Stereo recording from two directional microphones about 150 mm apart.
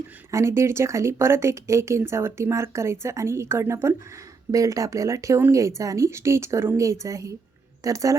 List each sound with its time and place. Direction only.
0.3 s speech: 20° right (ahead or behind)